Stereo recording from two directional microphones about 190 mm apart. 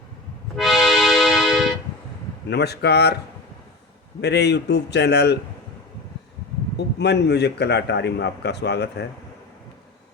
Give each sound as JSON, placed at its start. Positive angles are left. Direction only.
{"t": 0.5, "sound": "music", "side_deg": 0}
{"t": 2.5, "sound": "a man's voice", "side_deg": 60}
{"t": 4.2, "sound": "a man's voice", "side_deg": 60}
{"t": 6.7, "sound": "a man's voice", "side_deg": 60}